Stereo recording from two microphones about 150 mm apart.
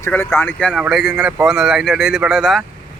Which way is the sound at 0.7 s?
Centre (ahead or behind).